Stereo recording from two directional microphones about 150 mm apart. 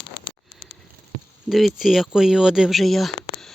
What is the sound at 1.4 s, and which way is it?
Speech, centre (ahead or behind).